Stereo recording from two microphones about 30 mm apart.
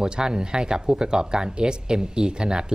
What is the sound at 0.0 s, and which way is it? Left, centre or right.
Speech, right.